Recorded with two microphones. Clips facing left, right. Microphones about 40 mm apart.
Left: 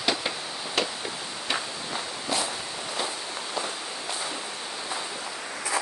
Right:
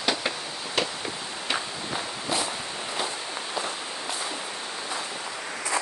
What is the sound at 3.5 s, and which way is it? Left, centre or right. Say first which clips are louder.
Walk: even; centre.